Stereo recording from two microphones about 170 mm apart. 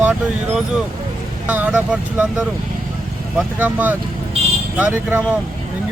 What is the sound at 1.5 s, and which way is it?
Speech, 10° right (ahead or behind).